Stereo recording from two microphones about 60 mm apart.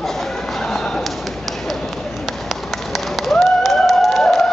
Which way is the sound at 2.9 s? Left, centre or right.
Centre.